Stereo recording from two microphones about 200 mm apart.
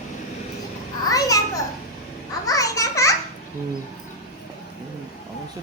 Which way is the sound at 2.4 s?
15° left (ahead or behind).